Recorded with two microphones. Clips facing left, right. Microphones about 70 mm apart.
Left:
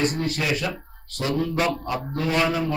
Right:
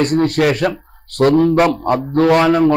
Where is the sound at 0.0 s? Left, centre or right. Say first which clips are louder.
Right 11 dB; right.